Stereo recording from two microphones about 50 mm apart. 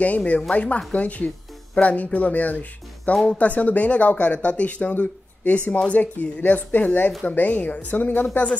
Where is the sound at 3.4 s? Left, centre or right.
Left.